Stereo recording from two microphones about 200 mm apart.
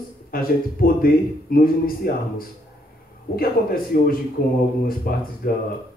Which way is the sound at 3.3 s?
45° left (ahead or behind).